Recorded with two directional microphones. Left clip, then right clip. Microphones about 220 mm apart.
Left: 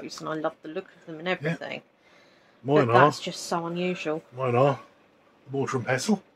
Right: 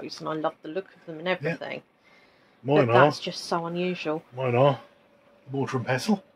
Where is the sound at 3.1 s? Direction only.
15° right (ahead or behind).